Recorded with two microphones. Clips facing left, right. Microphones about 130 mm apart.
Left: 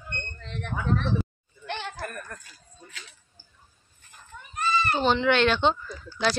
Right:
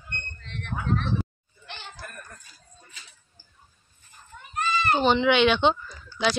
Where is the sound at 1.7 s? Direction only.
60° left (ahead or behind); by 2.4 s 90° left.